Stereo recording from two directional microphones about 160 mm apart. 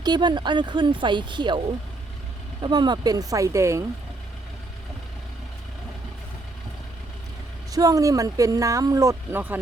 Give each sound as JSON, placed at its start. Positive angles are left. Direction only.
{"t": 0.0, "sound": "speech", "side_deg": -25}
{"t": 7.7, "sound": "speech", "side_deg": -20}